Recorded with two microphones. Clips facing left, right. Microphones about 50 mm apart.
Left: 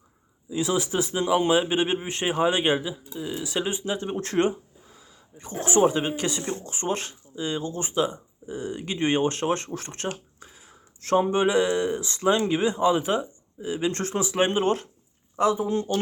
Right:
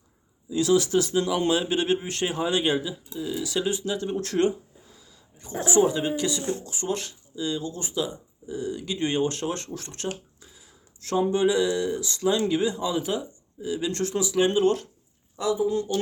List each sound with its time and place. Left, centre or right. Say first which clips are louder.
0.5 s a man's voice: right 4 dB; left
15.4 s speech: left 2 dB; left